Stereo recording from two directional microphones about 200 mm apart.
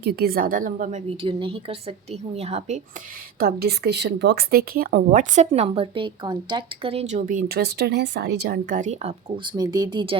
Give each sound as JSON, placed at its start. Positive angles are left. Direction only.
{"t": 0.0, "sound": "a woman's voice", "side_deg": -50}
{"t": 1.2, "sound": "a woman's voice", "side_deg": -25}
{"t": 3.3, "sound": "speech", "side_deg": -50}